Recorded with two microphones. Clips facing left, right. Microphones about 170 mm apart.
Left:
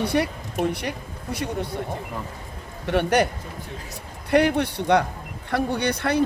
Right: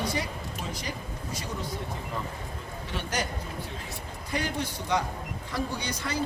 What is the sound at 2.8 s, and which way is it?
Speech, 65° left (ahead or behind).